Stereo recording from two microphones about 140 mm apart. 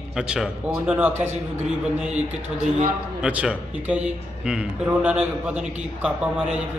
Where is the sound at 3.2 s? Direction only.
10° right (ahead or behind).